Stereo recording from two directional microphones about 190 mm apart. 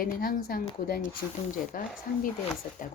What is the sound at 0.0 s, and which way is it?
Speech, 50° left (ahead or behind).